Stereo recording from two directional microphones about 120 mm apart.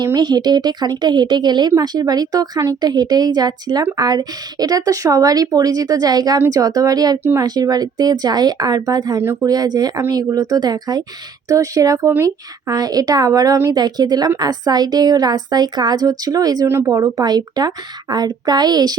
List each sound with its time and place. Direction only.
0.0 s a woman's voice: 35° right (ahead or behind)
16.6 s speech: 20° right (ahead or behind)
16.9 s a woman's voice: 30° right (ahead or behind)